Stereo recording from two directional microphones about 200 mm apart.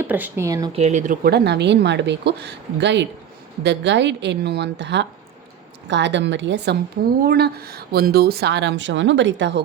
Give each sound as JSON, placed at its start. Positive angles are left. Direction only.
{"t": 0.0, "sound": "speech", "side_deg": -10}
{"t": 0.7, "sound": "speech", "side_deg": -35}
{"t": 7.2, "sound": "speech", "side_deg": -50}